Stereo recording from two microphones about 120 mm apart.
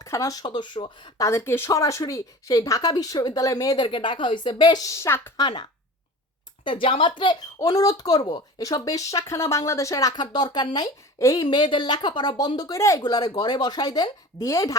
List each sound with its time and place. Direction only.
0.0 s speech: 30° left (ahead or behind)
1.2 s speech: 25° left (ahead or behind)
3.8 s speech: 45° left (ahead or behind); by 5.3 s 20° left (ahead or behind)
5.4 s speech: 40° left (ahead or behind)
6.7 s speech: 45° left (ahead or behind)
7.6 s speech: 30° left (ahead or behind)
11.4 s speech: 40° left (ahead or behind)